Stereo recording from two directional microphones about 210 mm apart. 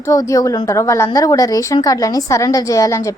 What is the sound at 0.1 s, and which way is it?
A woman's voice, 15° left (ahead or behind).